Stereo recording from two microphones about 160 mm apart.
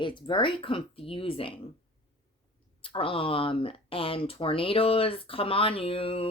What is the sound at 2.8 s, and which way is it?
Speech, 35° left (ahead or behind).